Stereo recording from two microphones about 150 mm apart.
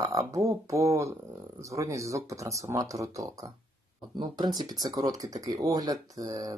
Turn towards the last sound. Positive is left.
turn(degrees=-25)  # may be behind; listen again after turning